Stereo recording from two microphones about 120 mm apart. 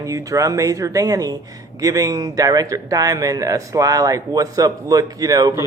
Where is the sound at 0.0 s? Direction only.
25° right (ahead or behind).